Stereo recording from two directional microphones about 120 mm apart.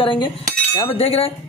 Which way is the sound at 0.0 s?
45° left (ahead or behind).